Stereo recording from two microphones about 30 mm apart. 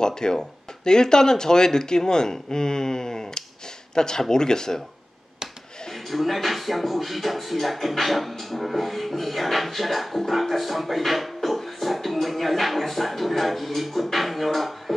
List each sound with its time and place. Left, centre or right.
0.0 s speech: left
6.0 s music: centre